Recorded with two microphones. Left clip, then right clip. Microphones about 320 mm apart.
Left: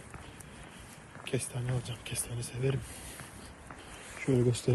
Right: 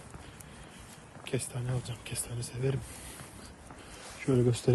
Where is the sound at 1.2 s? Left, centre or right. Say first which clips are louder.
Even; centre.